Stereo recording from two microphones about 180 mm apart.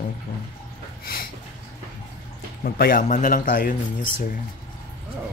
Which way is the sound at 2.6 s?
55° left (ahead or behind).